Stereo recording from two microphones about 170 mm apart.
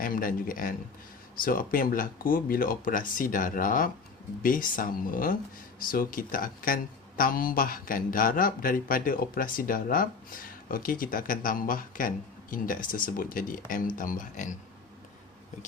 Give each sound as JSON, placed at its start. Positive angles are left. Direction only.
{"t": 0.0, "sound": "speech", "side_deg": 55}